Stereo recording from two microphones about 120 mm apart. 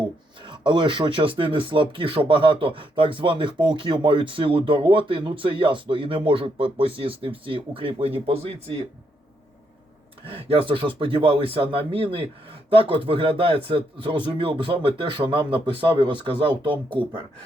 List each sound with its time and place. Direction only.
0.4 s speech: 40° right (ahead or behind); by 8.7 s 55° right (ahead or behind)
10.2 s speech: 50° right (ahead or behind)